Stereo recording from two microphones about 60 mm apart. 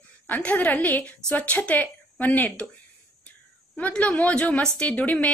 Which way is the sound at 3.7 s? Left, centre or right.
Left.